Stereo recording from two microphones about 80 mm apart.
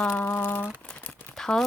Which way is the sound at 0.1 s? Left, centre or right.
Left.